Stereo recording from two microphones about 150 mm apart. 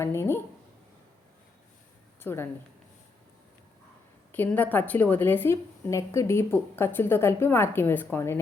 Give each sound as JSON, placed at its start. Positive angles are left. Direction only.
{"t": 0.0, "sound": "a sound", "side_deg": 15}
{"t": 2.2, "sound": "a woman's voice", "side_deg": 15}
{"t": 4.3, "sound": "a woman's voice", "side_deg": 10}